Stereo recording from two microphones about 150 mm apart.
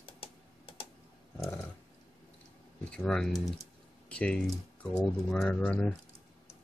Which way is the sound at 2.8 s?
5° left (ahead or behind).